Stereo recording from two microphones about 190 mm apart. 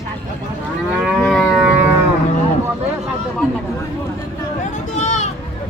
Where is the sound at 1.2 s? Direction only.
Centre (ahead or behind).